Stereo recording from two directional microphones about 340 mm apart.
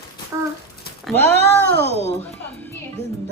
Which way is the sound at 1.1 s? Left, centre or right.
Centre.